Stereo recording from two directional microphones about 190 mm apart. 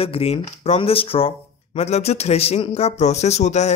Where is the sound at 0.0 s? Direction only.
30° left (ahead or behind).